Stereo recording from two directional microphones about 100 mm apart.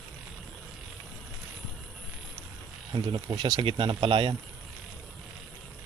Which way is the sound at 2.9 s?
50° right (ahead or behind).